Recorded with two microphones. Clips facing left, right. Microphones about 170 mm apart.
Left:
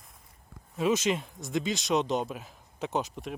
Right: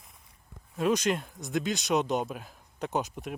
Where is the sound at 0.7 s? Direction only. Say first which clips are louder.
Even; centre (ahead or behind).